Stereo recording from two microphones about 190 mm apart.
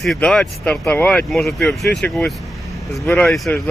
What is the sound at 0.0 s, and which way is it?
Speech, centre (ahead or behind).